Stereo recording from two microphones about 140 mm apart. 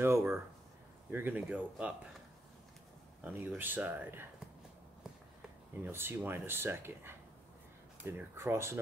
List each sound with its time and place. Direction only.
0.0 s a sound: 15° right (ahead or behind)
1.1 s speech: 15° right (ahead or behind)
3.3 s speech: 15° right (ahead or behind)
5.9 s speech: 15° right (ahead or behind)